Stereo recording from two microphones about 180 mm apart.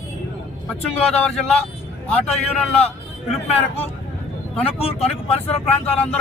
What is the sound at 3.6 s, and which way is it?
Speech, 35° left (ahead or behind).